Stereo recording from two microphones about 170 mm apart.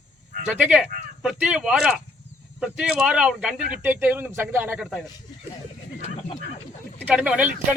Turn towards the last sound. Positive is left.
turn(degrees=-5)  # may be behind; listen again after turning